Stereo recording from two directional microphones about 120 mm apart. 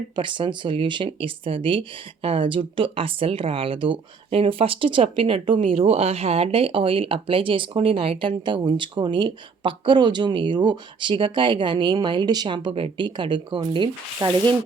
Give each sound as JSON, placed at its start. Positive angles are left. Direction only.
{"t": 0.2, "sound": "speech", "side_deg": -45}